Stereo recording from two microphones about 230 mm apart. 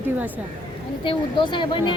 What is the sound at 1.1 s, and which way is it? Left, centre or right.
Speech, left.